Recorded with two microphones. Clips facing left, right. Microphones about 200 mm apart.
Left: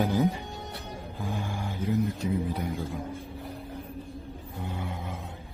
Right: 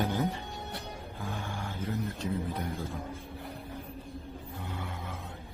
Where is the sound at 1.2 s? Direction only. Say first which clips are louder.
Left 5 dB; 15° left (ahead or behind).